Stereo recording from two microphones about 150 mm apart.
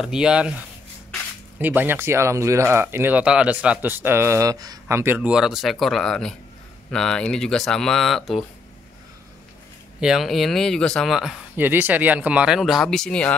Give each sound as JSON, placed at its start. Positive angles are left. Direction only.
{"t": 0.0, "sound": "speech", "side_deg": -5}
{"t": 9.9, "sound": "speech", "side_deg": 0}
{"t": 11.5, "sound": "speech", "side_deg": -15}